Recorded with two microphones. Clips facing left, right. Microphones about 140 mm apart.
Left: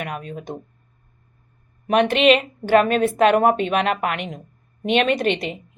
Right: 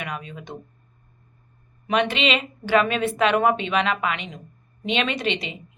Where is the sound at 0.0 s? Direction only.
50° left (ahead or behind).